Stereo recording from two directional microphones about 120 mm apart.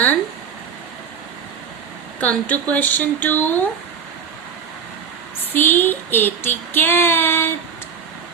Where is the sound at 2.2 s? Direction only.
10° left (ahead or behind).